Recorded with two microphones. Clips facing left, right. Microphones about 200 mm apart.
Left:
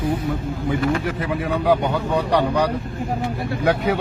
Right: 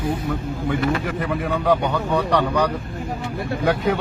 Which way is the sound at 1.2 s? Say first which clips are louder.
Even; centre (ahead or behind).